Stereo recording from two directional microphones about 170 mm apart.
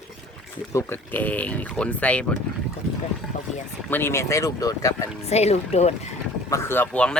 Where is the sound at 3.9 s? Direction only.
10° left (ahead or behind).